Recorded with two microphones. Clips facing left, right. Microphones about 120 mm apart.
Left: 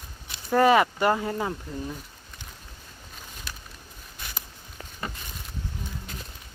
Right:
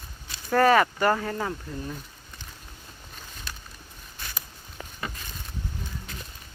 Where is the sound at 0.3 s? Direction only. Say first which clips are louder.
Left 1 dB; 15° left (ahead or behind).